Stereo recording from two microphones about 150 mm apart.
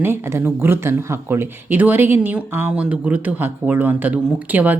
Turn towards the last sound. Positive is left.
turn(degrees=-10)  # may be behind; listen again after turning